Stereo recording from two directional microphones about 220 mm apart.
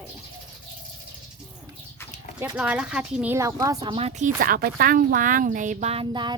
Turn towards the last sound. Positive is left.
turn(degrees=-20)  # may be behind; listen again after turning